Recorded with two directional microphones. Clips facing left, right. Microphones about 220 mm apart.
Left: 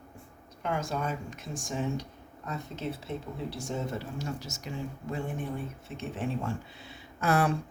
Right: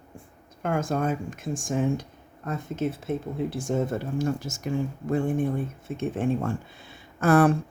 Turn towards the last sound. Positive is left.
turn(degrees=-50)  # may be behind; listen again after turning